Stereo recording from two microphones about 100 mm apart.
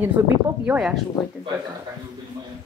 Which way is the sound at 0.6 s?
15° right (ahead or behind).